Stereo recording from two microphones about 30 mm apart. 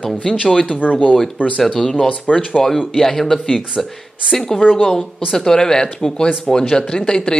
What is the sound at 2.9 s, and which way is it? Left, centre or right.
Speech, centre.